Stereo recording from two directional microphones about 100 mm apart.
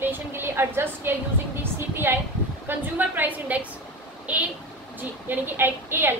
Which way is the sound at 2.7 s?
20° right (ahead or behind).